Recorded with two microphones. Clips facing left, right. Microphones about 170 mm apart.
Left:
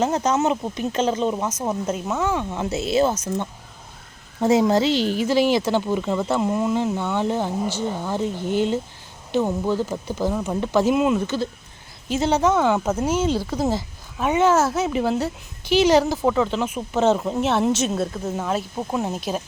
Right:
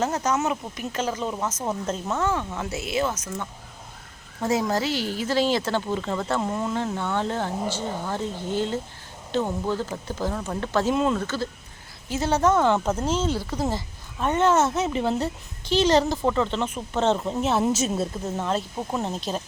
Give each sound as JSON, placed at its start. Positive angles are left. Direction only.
{"t": 0.0, "sound": "speech", "side_deg": 20}